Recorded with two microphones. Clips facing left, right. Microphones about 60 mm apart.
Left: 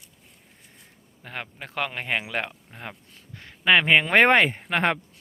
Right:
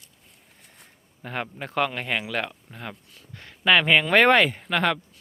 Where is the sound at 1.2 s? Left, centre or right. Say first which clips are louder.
Right 5 dB; centre.